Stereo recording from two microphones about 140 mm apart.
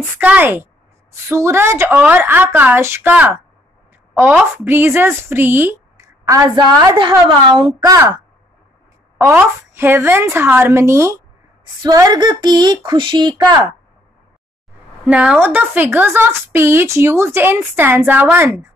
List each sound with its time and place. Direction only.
0.2 s a woman's voice: 10° right (ahead or behind)
9.2 s speech: 15° right (ahead or behind); by 13.4 s 35° right (ahead or behind)
15.0 s speech: 10° right (ahead or behind)